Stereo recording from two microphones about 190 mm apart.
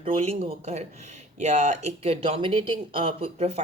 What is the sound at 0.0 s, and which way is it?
Speech, 30° right (ahead or behind).